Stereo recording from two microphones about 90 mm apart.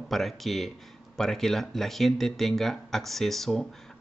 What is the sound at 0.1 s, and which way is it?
Speech, centre (ahead or behind).